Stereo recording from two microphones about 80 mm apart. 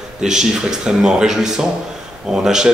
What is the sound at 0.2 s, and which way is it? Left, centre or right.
Speech, centre.